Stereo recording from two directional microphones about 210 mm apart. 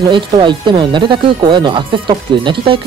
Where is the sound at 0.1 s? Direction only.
20° right (ahead or behind).